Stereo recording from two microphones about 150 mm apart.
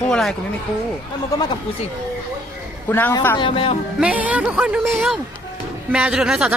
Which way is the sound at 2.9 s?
15° left (ahead or behind).